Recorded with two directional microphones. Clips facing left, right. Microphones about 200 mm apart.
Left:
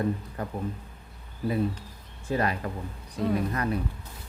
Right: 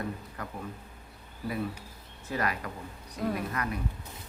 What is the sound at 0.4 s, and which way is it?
Speech, 25° left (ahead or behind).